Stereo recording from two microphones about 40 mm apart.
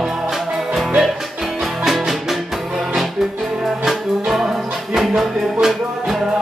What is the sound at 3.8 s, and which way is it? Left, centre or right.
Music, centre.